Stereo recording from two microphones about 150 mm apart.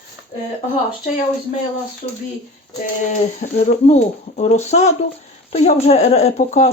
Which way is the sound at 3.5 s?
55° left (ahead or behind).